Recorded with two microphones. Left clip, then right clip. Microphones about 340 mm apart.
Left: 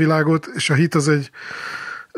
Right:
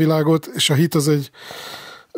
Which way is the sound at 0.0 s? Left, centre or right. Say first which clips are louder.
Even; centre.